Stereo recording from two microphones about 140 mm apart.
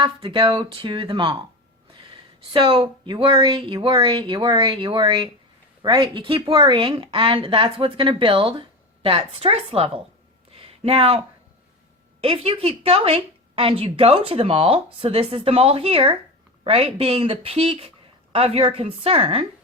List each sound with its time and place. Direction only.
0.0 s a woman's voice: 35° right (ahead or behind)
10.5 s a sound: 45° right (ahead or behind)
12.2 s a woman's voice: 45° right (ahead or behind)